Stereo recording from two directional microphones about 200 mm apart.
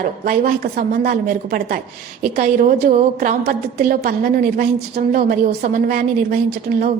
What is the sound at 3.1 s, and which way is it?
A woman's voice, 45° right (ahead or behind).